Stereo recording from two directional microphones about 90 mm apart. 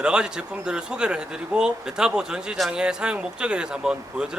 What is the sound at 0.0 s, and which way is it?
Speech, 10° right (ahead or behind).